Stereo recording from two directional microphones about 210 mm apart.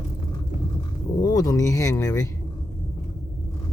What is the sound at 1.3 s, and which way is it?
Speech, 15° left (ahead or behind).